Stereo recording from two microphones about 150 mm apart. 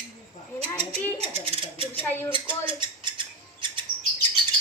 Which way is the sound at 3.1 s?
35° right (ahead or behind).